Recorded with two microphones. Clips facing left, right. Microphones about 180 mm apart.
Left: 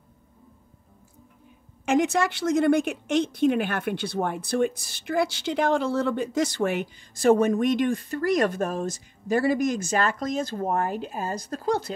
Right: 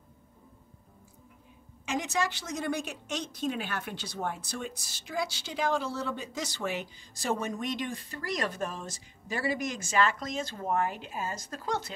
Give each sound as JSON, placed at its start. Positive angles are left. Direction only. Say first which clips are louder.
{"t": 1.9, "sound": "a woman's voice", "louder": "left 9 dB", "side_deg": 55}